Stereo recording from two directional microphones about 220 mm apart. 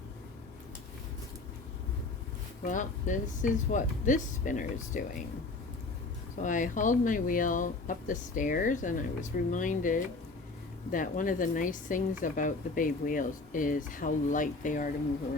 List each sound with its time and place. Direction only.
2.6 s speech: 35° left (ahead or behind)
6.4 s speech: 35° left (ahead or behind)